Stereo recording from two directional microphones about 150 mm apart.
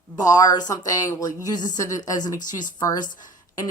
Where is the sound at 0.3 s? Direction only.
25° left (ahead or behind).